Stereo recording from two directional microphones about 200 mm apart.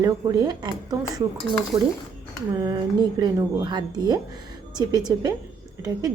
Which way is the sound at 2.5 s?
20° right (ahead or behind).